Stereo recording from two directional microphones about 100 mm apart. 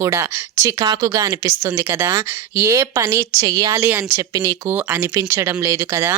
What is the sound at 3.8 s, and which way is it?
Speech, 20° right (ahead or behind).